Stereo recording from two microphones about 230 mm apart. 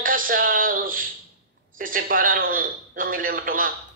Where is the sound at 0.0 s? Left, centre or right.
Right.